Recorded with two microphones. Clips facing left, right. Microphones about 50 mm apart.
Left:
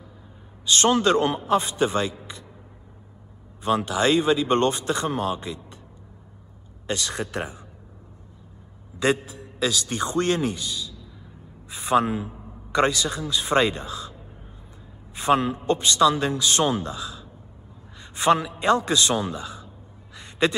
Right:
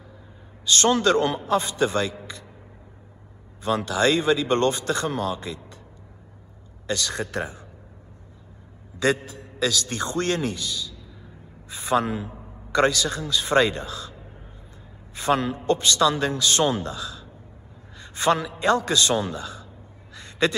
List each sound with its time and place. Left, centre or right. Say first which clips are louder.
0.7 s speech: even; left
3.6 s speech: even; left
6.9 s speech: right 1 dB; left
9.6 s speech: even; left
15.1 s a man's voice: left 2 dB; left
17.9 s a sound: left 2 dB; left
18.9 s speech: even; left
20.2 s a sound: even; left